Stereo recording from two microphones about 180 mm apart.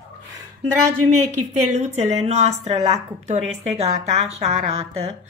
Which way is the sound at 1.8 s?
35° right (ahead or behind).